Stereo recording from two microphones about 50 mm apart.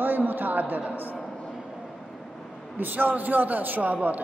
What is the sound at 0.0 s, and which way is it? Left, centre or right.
A man's voice, right.